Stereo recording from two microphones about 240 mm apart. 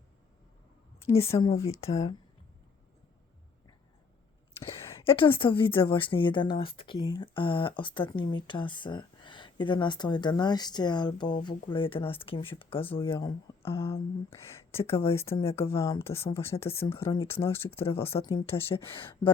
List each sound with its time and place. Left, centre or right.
1.1 s a woman's voice: left
4.6 s a woman's voice: left
15.2 s a woman's voice: left
15.7 s speech: centre
16.6 s a woman's voice: left